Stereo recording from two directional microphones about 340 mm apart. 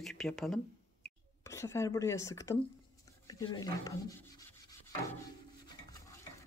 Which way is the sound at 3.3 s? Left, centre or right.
Centre.